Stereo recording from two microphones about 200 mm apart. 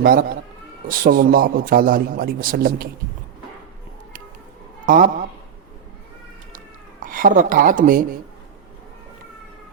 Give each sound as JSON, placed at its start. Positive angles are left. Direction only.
{"t": 0.0, "sound": "a man's voice", "side_deg": -50}
{"t": 4.9, "sound": "speech", "side_deg": -40}
{"t": 7.0, "sound": "speech", "side_deg": -45}